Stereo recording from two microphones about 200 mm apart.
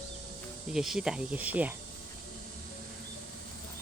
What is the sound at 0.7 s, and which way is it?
Speech, centre (ahead or behind).